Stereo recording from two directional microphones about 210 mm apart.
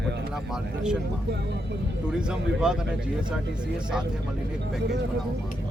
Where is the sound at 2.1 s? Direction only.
5° right (ahead or behind).